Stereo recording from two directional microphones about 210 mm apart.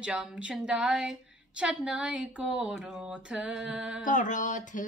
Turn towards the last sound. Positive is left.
turn(degrees=35)  # may be behind; listen again after turning